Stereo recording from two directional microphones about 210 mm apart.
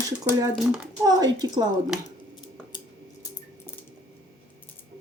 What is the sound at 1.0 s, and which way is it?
Speech, 20° right (ahead or behind).